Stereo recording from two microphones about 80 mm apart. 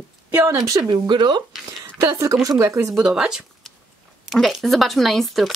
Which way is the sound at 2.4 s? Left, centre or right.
Right.